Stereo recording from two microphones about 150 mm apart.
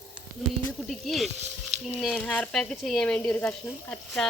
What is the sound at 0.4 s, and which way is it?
Speech, centre (ahead or behind).